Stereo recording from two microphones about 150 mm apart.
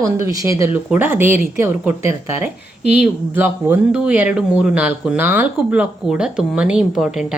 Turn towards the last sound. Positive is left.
turn(degrees=-5)  # may be behind; listen again after turning